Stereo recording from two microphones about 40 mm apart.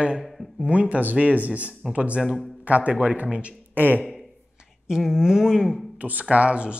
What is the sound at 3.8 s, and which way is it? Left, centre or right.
Speech, right.